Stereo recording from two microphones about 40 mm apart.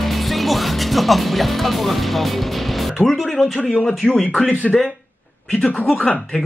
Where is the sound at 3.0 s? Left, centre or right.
Centre.